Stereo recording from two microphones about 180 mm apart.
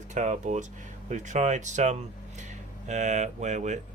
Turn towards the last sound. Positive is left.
turn(degrees=-40)  # may be behind; listen again after turning